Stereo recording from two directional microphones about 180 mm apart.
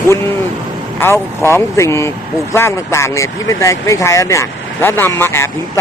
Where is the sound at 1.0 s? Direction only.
15° left (ahead or behind).